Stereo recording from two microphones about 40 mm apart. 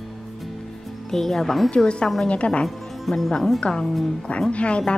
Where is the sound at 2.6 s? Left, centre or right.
Centre.